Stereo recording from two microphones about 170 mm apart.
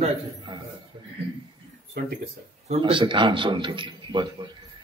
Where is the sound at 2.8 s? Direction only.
30° right (ahead or behind).